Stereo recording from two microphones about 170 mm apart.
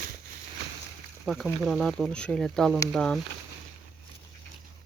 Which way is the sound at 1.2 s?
Centre (ahead or behind).